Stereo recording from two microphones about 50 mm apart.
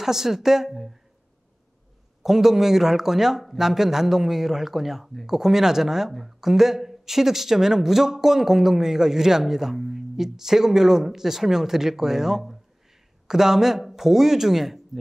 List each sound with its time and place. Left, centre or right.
0.0 s speech: centre
2.2 s speech: centre